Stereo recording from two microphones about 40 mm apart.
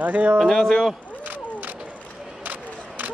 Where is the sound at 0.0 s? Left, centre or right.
Right.